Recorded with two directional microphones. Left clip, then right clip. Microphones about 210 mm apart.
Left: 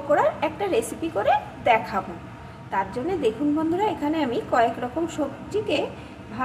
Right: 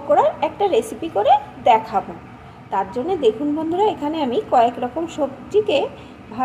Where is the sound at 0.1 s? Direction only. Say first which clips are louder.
Right 5 dB; 20° right (ahead or behind).